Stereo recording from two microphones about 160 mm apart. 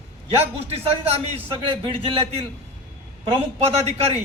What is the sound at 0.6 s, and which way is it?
A man's voice, 40° right (ahead or behind).